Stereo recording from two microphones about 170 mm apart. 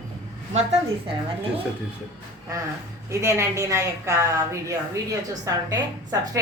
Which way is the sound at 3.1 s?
15° right (ahead or behind).